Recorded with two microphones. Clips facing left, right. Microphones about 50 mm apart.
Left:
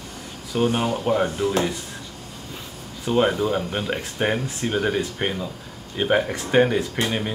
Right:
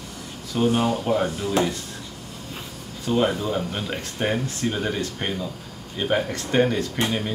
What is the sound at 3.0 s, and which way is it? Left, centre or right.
Speech, centre.